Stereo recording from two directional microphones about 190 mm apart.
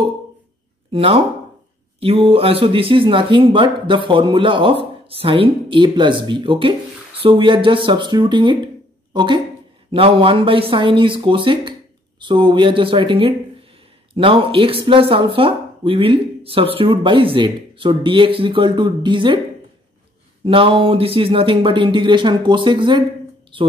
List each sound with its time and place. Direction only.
0.9 s speech: 30° right (ahead or behind)
20.4 s speech: 30° right (ahead or behind)